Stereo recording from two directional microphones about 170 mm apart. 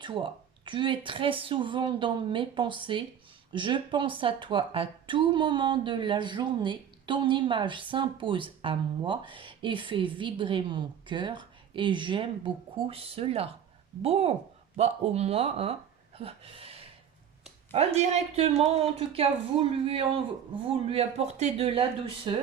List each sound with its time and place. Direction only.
0.0 s a woman's voice: 30° right (ahead or behind)